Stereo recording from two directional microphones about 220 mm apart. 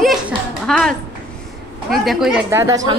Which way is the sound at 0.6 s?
Centre (ahead or behind).